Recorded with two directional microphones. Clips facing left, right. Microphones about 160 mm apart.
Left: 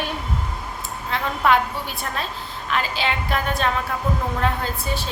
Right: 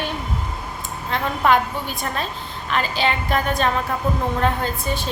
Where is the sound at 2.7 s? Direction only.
Centre (ahead or behind).